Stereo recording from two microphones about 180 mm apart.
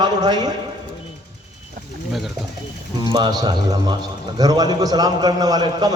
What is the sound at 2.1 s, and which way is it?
Speech, centre (ahead or behind).